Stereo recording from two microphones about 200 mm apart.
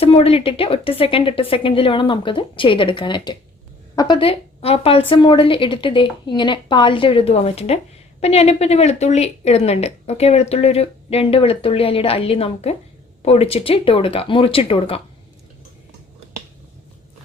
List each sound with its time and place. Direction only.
0.0 s a woman's voice: 30° left (ahead or behind)